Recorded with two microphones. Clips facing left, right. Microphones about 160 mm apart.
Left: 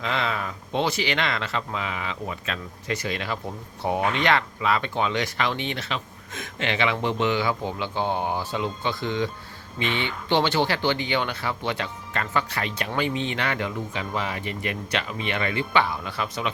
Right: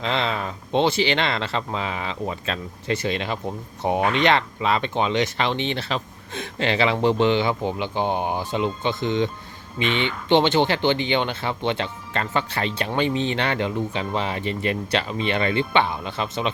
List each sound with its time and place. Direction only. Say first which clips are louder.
0.0 s speech: right 3 dB; 25° right (ahead or behind)